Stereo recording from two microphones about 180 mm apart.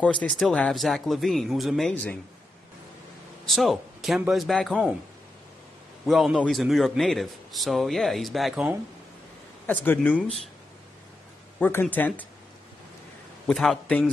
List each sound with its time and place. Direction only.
0.0 s a man's voice: 5° left (ahead or behind)
3.4 s a man's voice: centre (ahead or behind)
6.0 s a man's voice: centre (ahead or behind)
9.7 s speech: 10° left (ahead or behind)
11.6 s speech: 10° left (ahead or behind)
13.5 s a man's voice: 5° left (ahead or behind)